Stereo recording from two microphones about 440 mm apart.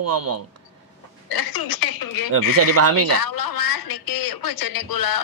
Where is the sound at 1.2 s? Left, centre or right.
Left.